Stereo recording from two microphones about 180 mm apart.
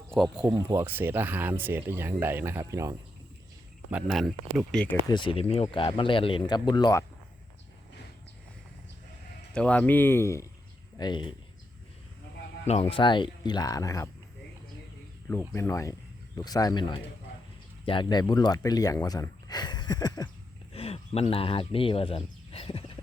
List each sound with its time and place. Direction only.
0.1 s speech: centre (ahead or behind)
0.4 s speech: 15° right (ahead or behind)
3.9 s speech: centre (ahead or behind)
5.0 s speech: 25° left (ahead or behind)
9.6 s speech: 5° left (ahead or behind); by 11.3 s 25° left (ahead or behind)
12.6 s speech: 35° left (ahead or behind); by 14.1 s 20° left (ahead or behind)
15.3 s speech: 15° left (ahead or behind)
20.7 s speech: 35° left (ahead or behind)